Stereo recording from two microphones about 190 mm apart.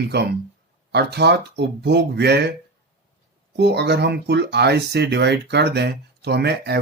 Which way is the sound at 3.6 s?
60° right (ahead or behind).